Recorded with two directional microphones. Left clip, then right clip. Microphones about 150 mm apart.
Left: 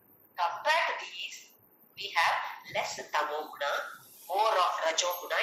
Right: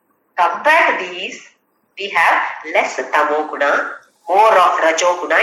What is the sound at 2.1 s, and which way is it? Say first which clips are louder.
Speech: right 14 dB; 55° right (ahead or behind).